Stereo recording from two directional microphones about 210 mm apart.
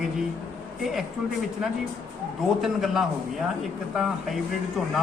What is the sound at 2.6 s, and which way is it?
Speech, centre (ahead or behind).